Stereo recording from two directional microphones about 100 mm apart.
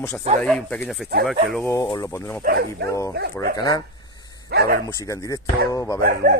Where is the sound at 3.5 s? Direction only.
40° left (ahead or behind).